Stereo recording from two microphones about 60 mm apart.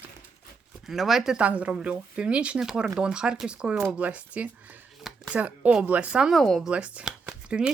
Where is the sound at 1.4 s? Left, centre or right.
Right.